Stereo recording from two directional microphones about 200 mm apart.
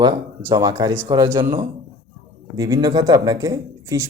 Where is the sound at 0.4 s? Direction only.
20° right (ahead or behind).